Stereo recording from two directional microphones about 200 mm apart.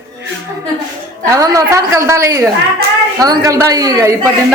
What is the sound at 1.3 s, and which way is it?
A woman's voice, 15° right (ahead or behind).